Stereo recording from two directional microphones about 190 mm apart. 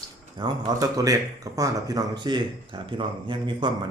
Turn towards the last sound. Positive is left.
turn(degrees=-25)  # may be behind; listen again after turning